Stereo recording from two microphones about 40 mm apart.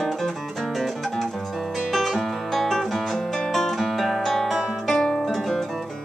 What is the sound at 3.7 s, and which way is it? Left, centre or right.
Music, centre.